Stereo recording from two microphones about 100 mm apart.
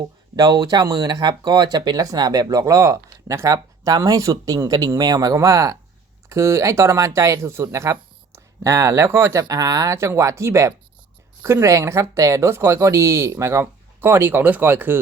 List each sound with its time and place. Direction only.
0.3 s speech: 45° right (ahead or behind); by 14.9 s 20° right (ahead or behind)